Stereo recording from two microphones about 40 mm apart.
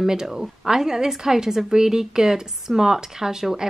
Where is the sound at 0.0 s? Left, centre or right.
Centre.